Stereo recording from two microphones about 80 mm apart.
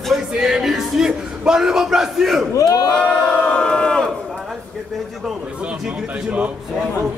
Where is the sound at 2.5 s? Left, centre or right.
Left.